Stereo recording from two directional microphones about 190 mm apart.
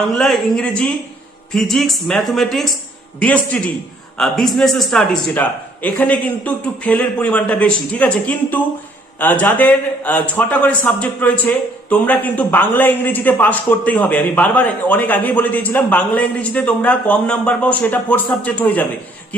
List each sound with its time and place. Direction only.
0.2 s a man's voice: 5° left (ahead or behind)